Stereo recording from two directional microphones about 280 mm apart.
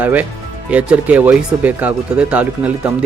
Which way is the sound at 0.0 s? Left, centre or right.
Centre.